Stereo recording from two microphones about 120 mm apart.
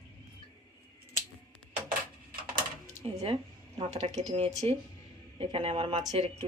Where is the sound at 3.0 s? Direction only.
60° right (ahead or behind).